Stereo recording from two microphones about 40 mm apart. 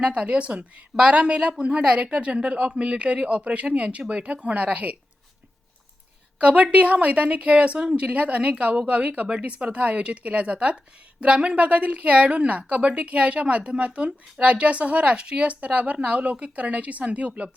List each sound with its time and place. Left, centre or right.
0.0 s a woman's voice: right
6.4 s a woman's voice: right